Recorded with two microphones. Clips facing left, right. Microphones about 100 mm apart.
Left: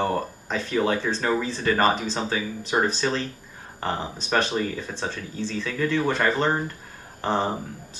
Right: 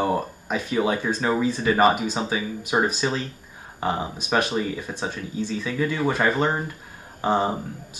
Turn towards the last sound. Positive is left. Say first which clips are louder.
# right 2 dB
turn(degrees=-10)  # may be behind; listen again after turning